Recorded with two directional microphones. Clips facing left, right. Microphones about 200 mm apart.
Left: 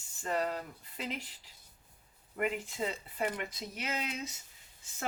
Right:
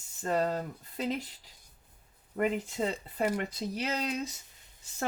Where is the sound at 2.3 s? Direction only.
40° right (ahead or behind).